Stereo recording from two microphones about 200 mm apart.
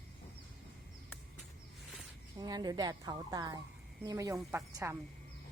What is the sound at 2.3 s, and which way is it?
Speech, 20° right (ahead or behind).